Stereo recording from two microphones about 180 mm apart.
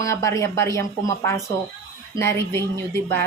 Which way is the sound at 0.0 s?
15° left (ahead or behind).